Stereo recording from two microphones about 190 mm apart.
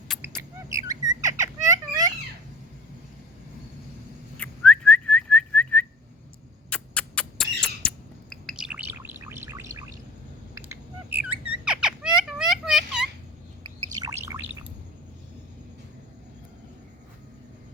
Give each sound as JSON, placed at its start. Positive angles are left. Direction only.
{"t": 0.8, "sound": "a sound", "side_deg": -20}
{"t": 1.6, "sound": "children playing", "side_deg": -20}
{"t": 4.4, "sound": "whistling", "side_deg": 5}
{"t": 6.7, "sound": "rodents", "side_deg": 5}
{"t": 10.5, "sound": "a sound", "side_deg": -10}
{"t": 14.0, "sound": "bird", "side_deg": -15}